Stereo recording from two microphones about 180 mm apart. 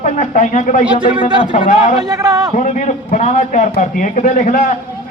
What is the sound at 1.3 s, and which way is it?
Speech, 25° right (ahead or behind).